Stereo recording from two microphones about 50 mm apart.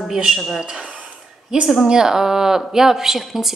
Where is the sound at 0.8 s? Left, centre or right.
Right.